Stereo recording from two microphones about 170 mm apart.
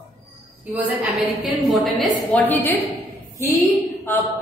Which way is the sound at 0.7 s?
5° right (ahead or behind).